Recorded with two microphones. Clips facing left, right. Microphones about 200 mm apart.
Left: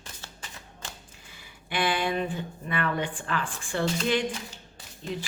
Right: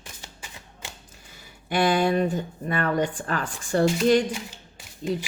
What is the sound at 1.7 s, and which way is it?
Speech, 40° right (ahead or behind).